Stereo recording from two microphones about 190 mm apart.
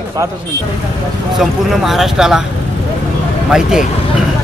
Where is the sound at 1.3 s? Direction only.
Centre (ahead or behind).